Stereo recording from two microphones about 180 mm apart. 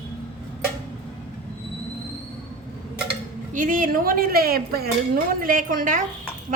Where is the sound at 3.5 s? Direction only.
45° right (ahead or behind).